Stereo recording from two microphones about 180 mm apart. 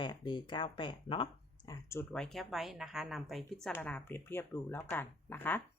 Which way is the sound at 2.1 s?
Centre (ahead or behind).